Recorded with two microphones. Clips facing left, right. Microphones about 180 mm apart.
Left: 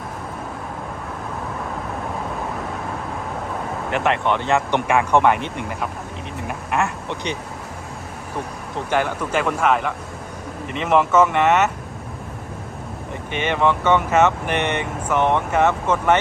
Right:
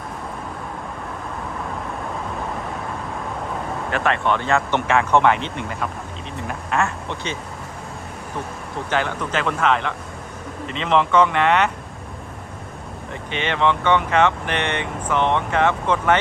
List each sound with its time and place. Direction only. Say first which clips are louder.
3.9 s speech: left 1 dB; 20° left (ahead or behind)
6.5 s speech: even; 15° left (ahead or behind)
8.9 s speech: left 2 dB; 10° left (ahead or behind)
13.4 s speech: left 1 dB; 10° left (ahead or behind)